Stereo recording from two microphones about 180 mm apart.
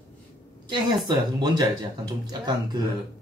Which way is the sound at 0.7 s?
25° right (ahead or behind).